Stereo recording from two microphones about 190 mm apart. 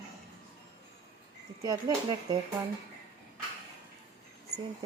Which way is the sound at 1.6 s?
20° right (ahead or behind).